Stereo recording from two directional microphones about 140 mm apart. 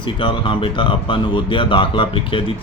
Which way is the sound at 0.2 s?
35° left (ahead or behind).